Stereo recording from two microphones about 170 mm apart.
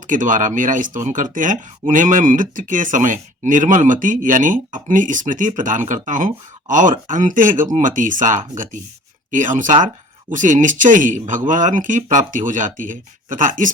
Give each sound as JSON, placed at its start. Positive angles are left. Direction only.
{"t": 0.1, "sound": "speech", "side_deg": -50}